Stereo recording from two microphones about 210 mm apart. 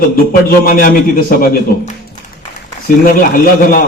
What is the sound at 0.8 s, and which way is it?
A man's voice, 45° left (ahead or behind).